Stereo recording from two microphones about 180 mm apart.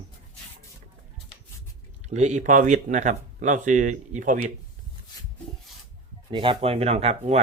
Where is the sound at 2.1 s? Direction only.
40° right (ahead or behind).